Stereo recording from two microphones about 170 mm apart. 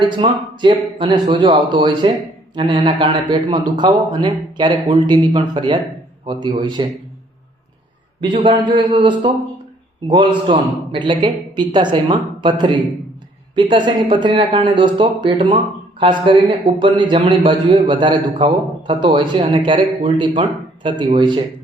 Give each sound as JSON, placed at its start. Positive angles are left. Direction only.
{"t": 0.0, "sound": "a man's voice", "side_deg": -25}
{"t": 8.2, "sound": "a man's voice", "side_deg": -30}